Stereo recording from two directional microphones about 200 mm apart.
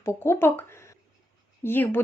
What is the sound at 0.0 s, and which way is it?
Speech, 15° left (ahead or behind).